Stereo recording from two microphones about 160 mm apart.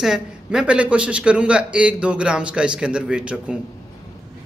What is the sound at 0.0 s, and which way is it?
A man's voice, 5° right (ahead or behind).